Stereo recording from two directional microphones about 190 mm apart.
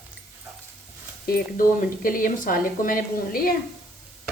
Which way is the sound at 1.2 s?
50° left (ahead or behind).